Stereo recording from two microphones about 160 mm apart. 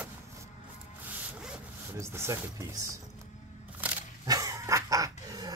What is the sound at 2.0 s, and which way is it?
Speech, 15° right (ahead or behind).